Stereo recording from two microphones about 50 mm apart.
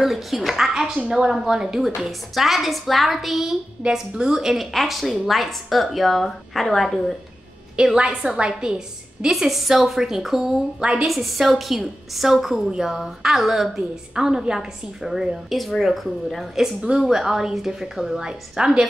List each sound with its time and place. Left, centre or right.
0.0 s a woman's voice: centre
7.7 s a woman's voice: centre
10.8 s a woman's voice: centre
11.1 s a woman's voice: centre
17.1 s a woman's voice: centre
18.2 s a woman's voice: centre